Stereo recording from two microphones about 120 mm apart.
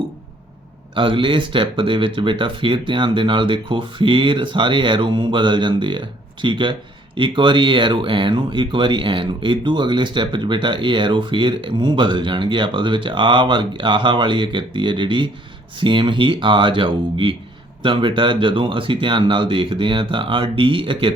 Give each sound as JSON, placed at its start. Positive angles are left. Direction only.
{"t": 0.9, "sound": "speech", "side_deg": -45}